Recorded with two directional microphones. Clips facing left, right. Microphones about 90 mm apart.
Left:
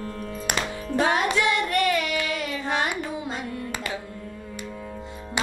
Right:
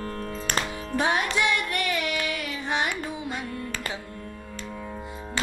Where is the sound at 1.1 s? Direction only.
20° left (ahead or behind).